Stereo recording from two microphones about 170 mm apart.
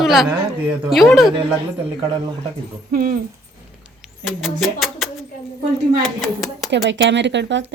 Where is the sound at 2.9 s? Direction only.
55° right (ahead or behind).